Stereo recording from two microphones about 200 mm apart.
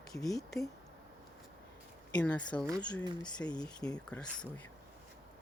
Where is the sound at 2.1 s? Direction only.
5° left (ahead or behind).